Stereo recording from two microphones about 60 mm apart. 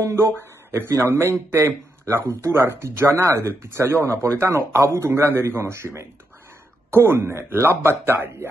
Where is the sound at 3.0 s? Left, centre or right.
Right.